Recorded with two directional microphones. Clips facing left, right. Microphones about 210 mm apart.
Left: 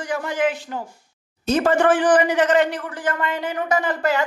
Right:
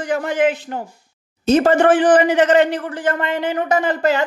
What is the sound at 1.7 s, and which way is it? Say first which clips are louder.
Speech: right 1 dB; 20° right (ahead or behind).